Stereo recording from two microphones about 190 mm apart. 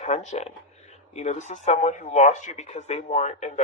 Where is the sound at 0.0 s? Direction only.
35° left (ahead or behind).